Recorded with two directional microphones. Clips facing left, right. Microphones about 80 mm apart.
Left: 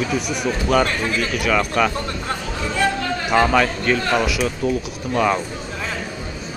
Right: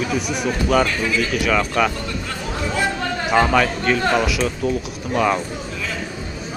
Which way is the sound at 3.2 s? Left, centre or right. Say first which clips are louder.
Even; centre.